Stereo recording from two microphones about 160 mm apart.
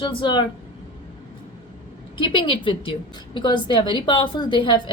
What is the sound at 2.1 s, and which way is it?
A woman's voice, 30° left (ahead or behind).